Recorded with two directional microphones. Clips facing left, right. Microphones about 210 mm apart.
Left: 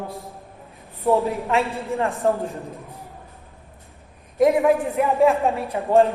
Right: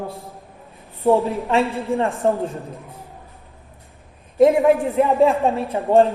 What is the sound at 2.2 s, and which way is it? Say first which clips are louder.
Speech: right 1 dB; 25° right (ahead or behind).